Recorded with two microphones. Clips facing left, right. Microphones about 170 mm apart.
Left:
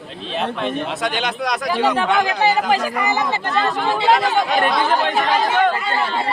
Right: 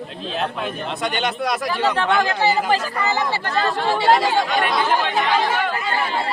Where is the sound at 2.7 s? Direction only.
15° left (ahead or behind).